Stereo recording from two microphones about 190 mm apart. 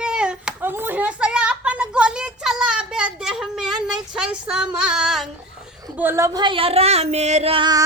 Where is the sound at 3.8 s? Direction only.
5° right (ahead or behind).